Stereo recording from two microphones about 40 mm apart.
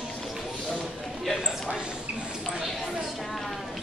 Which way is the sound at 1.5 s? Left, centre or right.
Centre.